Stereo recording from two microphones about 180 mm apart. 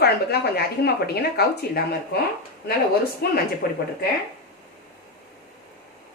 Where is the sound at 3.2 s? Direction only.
60° left (ahead or behind).